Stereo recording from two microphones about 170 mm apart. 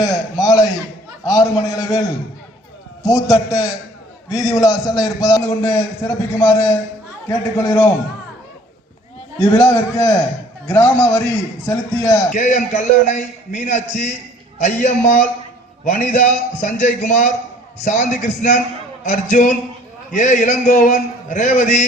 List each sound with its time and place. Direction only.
0.0 s a sound: 20° left (ahead or behind)
1.2 s a man's voice: 20° left (ahead or behind)
9.4 s a man's voice: 15° left (ahead or behind)
12.3 s a man's voice: 50° left (ahead or behind)